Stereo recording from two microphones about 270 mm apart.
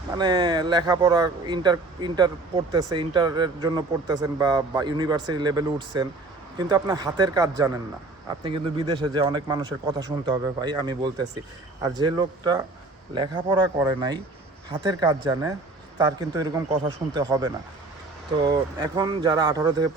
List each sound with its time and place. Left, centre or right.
0.2 s speech: centre